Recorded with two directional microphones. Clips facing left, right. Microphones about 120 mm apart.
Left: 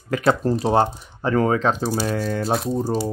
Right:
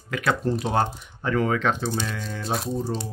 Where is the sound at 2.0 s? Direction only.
45° left (ahead or behind).